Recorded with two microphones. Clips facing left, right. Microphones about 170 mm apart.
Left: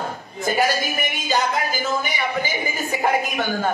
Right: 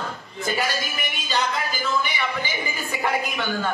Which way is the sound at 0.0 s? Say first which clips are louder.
Left 4 dB; 45° left (ahead or behind).